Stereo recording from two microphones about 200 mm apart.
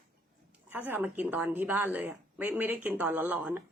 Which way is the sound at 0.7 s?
10° right (ahead or behind).